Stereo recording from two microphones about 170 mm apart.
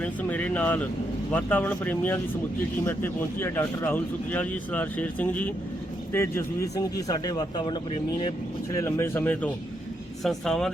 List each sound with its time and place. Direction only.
0.0 s a man's voice: 10° left (ahead or behind); by 7.8 s 25° left (ahead or behind)
8.7 s speech: 15° left (ahead or behind)